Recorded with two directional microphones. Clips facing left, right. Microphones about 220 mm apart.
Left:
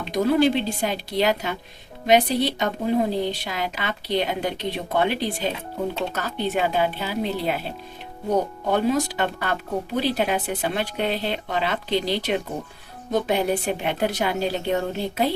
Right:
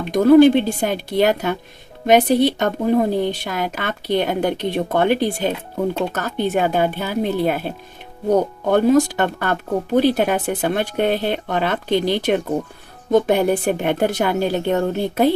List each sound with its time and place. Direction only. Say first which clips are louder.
0.0 s speech: right 9 dB; 55° right (ahead or behind)
8.7 s speech: right 7 dB; 50° right (ahead or behind)